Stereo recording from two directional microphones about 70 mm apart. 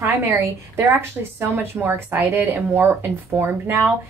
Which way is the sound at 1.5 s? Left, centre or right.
Right.